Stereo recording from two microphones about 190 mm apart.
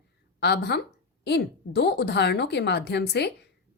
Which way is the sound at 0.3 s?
60° left (ahead or behind).